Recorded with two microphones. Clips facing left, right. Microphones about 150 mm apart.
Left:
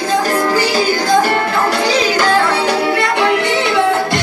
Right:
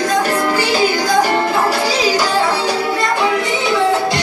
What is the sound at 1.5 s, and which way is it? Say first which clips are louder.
Music: left 1 dB; 10° right (ahead or behind).